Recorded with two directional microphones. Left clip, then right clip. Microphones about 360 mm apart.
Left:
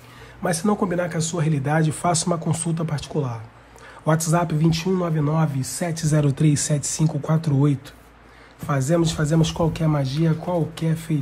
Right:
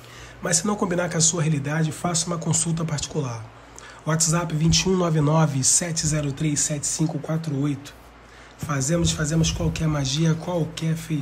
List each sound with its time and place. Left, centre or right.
0.4 s a man's voice: centre